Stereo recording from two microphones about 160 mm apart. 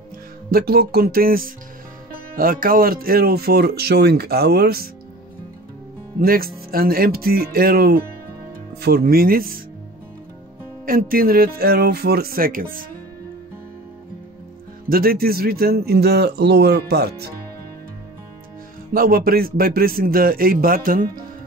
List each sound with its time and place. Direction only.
0.5 s speech: 70° right (ahead or behind)
6.1 s a man's voice: 65° right (ahead or behind)
10.9 s speech: 65° right (ahead or behind)
14.9 s speech: 70° right (ahead or behind); by 17.3 s 90° right
18.9 s a man's voice: 65° right (ahead or behind)